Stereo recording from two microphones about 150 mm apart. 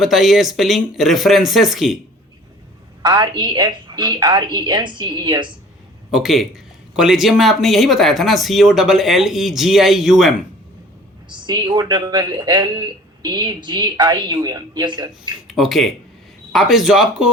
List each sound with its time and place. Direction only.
0.0 s speech: centre (ahead or behind)
3.0 s speech: 30° right (ahead or behind)
6.1 s speech: centre (ahead or behind)
11.3 s speech: 30° right (ahead or behind)
15.4 s speech: centre (ahead or behind)